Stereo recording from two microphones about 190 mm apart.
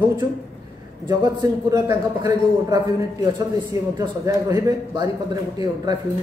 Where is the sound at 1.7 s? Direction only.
20° right (ahead or behind).